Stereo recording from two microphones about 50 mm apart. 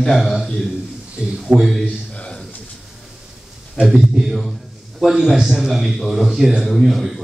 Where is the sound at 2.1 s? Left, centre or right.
Left.